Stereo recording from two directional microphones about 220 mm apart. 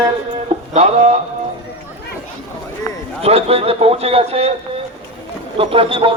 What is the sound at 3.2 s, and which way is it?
A man's voice, 25° right (ahead or behind).